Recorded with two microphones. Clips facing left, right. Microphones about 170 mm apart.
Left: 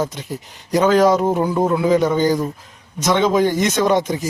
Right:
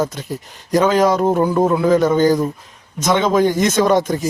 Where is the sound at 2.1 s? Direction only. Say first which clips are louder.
Right 3 dB; 45° right (ahead or behind).